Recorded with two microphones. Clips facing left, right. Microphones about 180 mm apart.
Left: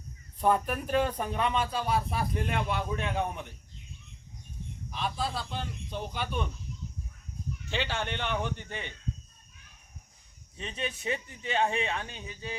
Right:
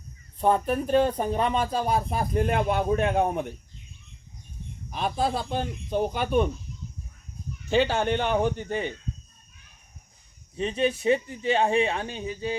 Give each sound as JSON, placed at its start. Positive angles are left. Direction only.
{"t": 0.3, "sound": "speech", "side_deg": -25}
{"t": 4.9, "sound": "speech", "side_deg": -50}
{"t": 7.7, "sound": "speech", "side_deg": -45}
{"t": 10.6, "sound": "speech", "side_deg": -35}